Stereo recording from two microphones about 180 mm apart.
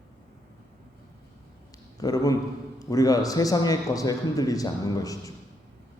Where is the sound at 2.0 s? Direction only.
20° left (ahead or behind).